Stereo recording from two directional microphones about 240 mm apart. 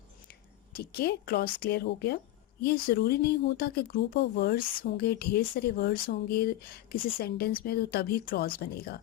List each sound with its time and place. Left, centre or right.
0.7 s speech: left